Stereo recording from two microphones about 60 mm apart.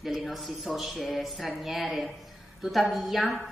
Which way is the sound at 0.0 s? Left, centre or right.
Centre.